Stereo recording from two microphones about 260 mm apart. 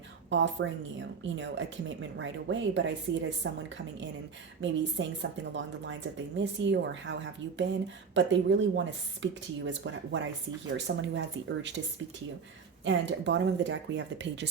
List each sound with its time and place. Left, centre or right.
0.3 s speech: right
4.6 s speech: right
12.8 s speech: right